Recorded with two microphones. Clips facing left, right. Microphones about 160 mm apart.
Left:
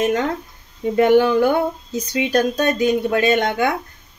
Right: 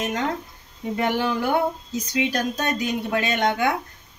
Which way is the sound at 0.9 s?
55° left (ahead or behind).